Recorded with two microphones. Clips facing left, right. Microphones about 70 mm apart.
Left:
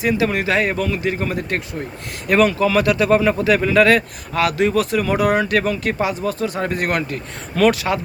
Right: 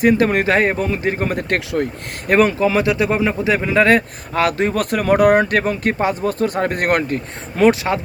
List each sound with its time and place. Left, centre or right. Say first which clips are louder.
0.0 s speech: right 4 dB; right
2.2 s speech: right 1 dB; right
3.8 s speech: right 1 dB; right
7.5 s speech: right 2 dB; right